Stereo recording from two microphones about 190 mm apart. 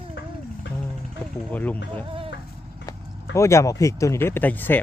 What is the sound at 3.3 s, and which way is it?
Speech, 15° left (ahead or behind).